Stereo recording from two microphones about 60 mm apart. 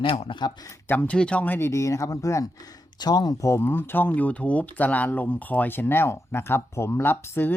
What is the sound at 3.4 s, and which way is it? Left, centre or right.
Speech, left.